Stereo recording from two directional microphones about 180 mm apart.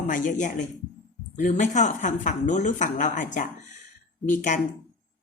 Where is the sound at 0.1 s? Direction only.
45° left (ahead or behind).